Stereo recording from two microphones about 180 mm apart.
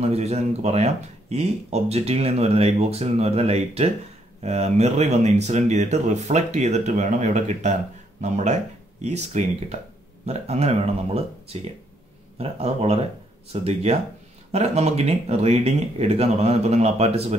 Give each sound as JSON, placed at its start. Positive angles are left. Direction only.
{"t": 0.0, "sound": "speech", "side_deg": -35}